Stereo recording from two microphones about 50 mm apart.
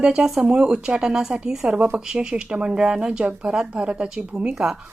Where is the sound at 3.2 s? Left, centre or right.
Right.